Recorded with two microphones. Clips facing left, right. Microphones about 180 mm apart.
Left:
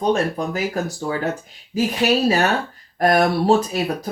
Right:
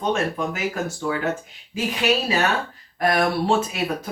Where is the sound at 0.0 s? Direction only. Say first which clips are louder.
Left 3 dB; 35° left (ahead or behind).